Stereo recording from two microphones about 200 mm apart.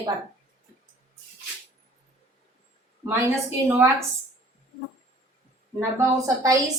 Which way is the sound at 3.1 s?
15° right (ahead or behind).